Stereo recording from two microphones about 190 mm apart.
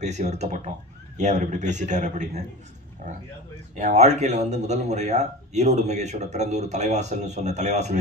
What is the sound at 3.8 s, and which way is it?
Speech, 40° right (ahead or behind).